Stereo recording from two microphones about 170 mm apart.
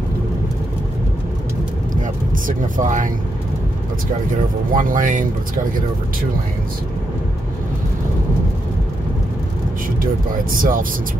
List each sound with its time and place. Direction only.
2.4 s speech: 50° right (ahead or behind)
4.7 s speech: 50° right (ahead or behind)
10.5 s speech: 55° right (ahead or behind)